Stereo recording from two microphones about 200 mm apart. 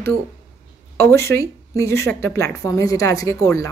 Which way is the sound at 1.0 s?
10° left (ahead or behind).